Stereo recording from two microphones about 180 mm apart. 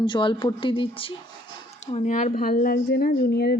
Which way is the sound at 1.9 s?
40° left (ahead or behind).